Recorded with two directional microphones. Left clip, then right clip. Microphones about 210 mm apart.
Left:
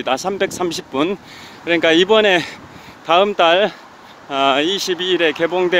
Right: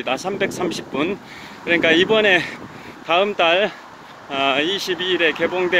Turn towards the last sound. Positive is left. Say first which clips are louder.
# left 2 dB
turn(degrees=25)  # may be behind; listen again after turning